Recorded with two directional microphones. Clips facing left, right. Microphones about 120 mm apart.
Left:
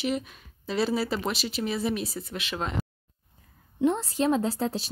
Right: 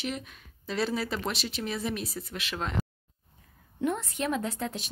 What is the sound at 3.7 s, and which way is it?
A woman's voice, 25° left (ahead or behind).